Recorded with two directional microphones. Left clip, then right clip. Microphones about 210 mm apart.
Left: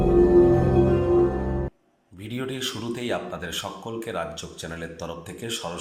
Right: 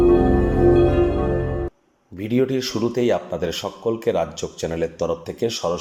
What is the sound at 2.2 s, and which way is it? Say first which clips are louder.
Speech: right 9 dB; 30° right (ahead or behind).